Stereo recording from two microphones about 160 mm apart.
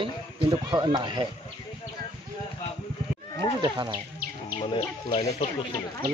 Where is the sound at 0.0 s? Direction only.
30° right (ahead or behind).